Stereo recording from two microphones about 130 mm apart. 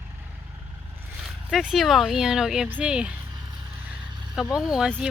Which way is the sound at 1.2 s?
5° right (ahead or behind).